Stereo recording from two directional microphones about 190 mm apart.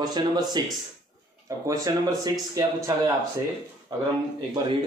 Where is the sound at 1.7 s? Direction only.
20° right (ahead or behind).